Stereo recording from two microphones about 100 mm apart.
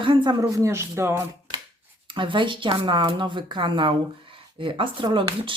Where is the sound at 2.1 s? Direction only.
55° right (ahead or behind).